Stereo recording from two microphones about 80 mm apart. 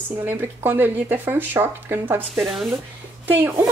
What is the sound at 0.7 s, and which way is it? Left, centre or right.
A woman's voice, right.